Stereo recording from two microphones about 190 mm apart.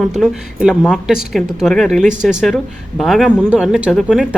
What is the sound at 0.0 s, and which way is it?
Speech, centre (ahead or behind).